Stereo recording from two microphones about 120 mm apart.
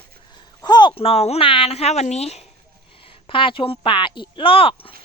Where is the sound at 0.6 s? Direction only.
40° left (ahead or behind); by 2.5 s 60° left (ahead or behind).